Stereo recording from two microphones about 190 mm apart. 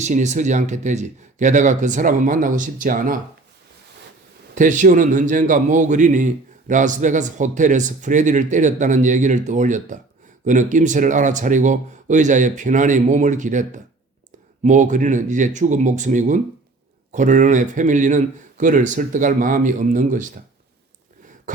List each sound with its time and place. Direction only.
0.0 s a man's voice: 40° right (ahead or behind)
4.5 s a man's voice: 40° right (ahead or behind)